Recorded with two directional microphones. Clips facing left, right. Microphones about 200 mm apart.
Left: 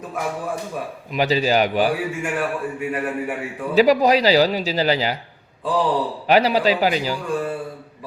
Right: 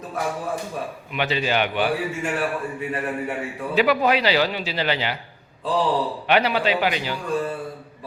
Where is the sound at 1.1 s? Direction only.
35° left (ahead or behind).